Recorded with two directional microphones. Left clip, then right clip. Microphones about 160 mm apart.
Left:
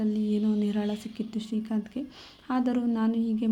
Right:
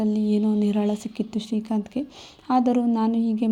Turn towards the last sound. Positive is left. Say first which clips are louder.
# right 5 dB
turn(degrees=-30)  # may be behind; listen again after turning